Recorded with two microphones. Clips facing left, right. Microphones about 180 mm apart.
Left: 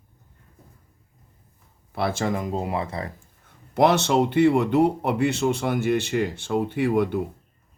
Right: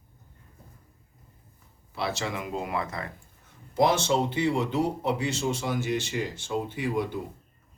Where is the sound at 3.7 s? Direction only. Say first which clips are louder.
Left 4 dB; 65° left (ahead or behind).